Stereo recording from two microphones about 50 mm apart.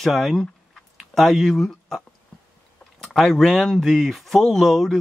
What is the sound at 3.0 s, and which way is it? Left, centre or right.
Speech, centre.